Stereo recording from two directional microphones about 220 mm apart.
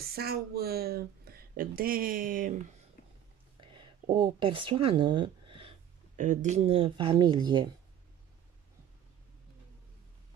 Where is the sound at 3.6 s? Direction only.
20° right (ahead or behind).